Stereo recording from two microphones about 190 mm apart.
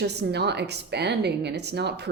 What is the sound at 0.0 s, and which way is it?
Speech, 60° right (ahead or behind).